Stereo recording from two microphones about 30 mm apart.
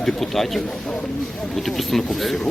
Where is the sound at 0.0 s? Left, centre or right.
Centre.